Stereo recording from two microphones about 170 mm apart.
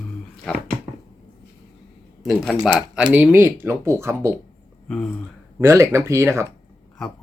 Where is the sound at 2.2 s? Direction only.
Centre (ahead or behind); by 4.3 s 15° right (ahead or behind).